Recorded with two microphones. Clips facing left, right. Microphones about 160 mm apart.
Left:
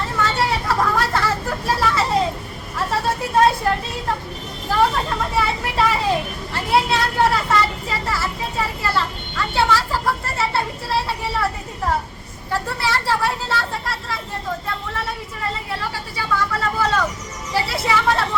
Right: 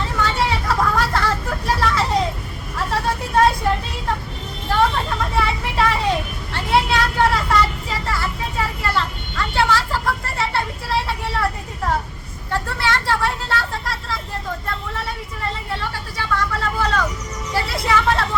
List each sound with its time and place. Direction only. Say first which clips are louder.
0.0 s vehicle: even; centre (ahead or behind)
4.7 s vehicle: even; centre (ahead or behind)
12.5 s vehicle: even; centre (ahead or behind)